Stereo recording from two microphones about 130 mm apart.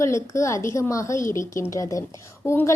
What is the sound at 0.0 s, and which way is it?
Speech, 25° left (ahead or behind).